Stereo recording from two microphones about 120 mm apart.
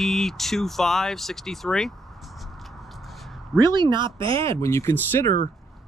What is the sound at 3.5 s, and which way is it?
Speech, 35° right (ahead or behind).